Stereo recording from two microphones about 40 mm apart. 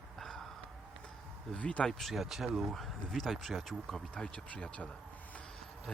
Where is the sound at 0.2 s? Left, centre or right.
Centre.